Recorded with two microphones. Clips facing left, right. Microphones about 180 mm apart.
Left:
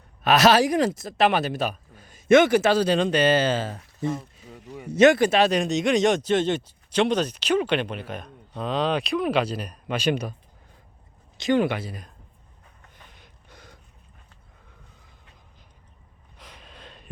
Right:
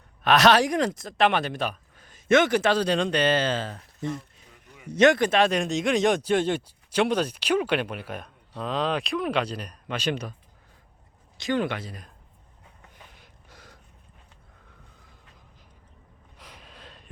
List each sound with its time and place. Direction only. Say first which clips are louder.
0.2 s speech: left 1 dB; 5° left (ahead or behind)
4.0 s a sound: left 4 dB; 45° left (ahead or behind)
4.9 s speech: left 3 dB; 5° left (ahead or behind)
11.3 s speech: left 5 dB; 20° left (ahead or behind)
11.6 s speech: left 4 dB; 10° left (ahead or behind)
13.1 s a sound: left 1 dB; 5° right (ahead or behind)
16.4 s gasp: left 1 dB; 5° right (ahead or behind)